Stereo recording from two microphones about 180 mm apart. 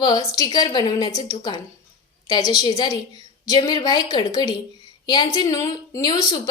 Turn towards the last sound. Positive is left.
turn(degrees=20)  # may be behind; listen again after turning